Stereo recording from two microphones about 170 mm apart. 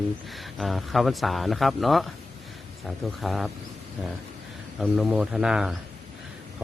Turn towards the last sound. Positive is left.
turn(degrees=-5)  # may be behind; listen again after turning